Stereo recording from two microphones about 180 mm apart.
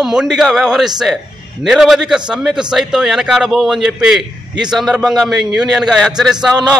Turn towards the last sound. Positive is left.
turn(degrees=-5)  # may be behind; listen again after turning